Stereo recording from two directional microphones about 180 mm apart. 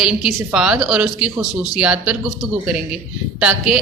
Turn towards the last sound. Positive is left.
turn(degrees=-5)  # may be behind; listen again after turning